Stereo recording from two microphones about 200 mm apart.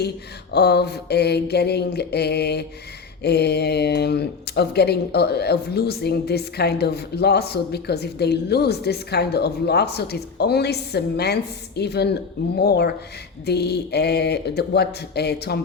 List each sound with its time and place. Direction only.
0.5 s speech: 55° left (ahead or behind)